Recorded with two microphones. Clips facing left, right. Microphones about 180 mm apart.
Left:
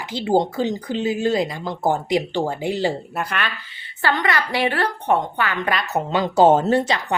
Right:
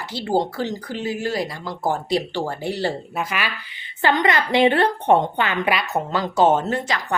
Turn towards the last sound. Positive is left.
turn(degrees=30)  # may be behind; listen again after turning